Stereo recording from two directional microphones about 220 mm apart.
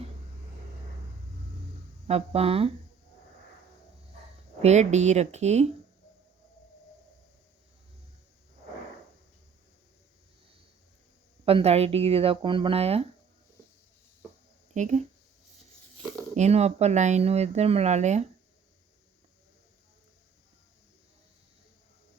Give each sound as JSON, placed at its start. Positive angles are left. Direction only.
{"t": 2.0, "sound": "speech", "side_deg": -25}
{"t": 4.6, "sound": "a woman's voice", "side_deg": -30}
{"t": 11.4, "sound": "speech", "side_deg": -25}
{"t": 14.7, "sound": "speech", "side_deg": -35}
{"t": 16.3, "sound": "speech", "side_deg": -30}